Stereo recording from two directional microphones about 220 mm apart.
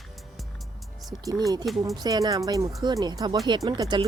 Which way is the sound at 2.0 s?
15° right (ahead or behind).